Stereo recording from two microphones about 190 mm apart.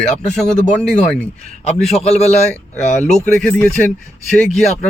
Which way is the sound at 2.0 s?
35° left (ahead or behind).